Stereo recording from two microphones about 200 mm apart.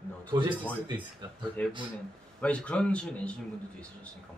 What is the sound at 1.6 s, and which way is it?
A man's voice, 10° left (ahead or behind).